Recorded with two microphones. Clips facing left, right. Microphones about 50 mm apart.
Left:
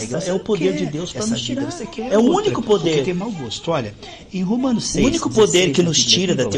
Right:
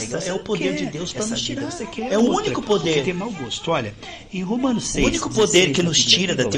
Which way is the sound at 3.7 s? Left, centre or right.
Centre.